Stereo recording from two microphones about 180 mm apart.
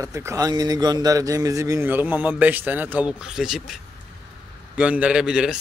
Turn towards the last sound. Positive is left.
turn(degrees=-5)  # may be behind; listen again after turning